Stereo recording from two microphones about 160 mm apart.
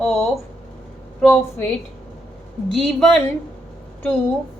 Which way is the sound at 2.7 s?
Centre (ahead or behind).